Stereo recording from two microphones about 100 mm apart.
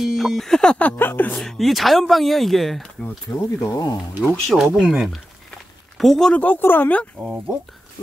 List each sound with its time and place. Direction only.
0.0 s speech: centre (ahead or behind); by 1.4 s 20° left (ahead or behind)
1.4 s speech: centre (ahead or behind)
3.3 s speech: 35° left (ahead or behind)
4.5 s speech: 5° right (ahead or behind); by 7.1 s 15° left (ahead or behind)